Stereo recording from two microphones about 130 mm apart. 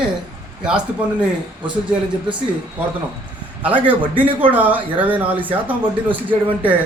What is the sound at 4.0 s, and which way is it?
Speech, 40° right (ahead or behind).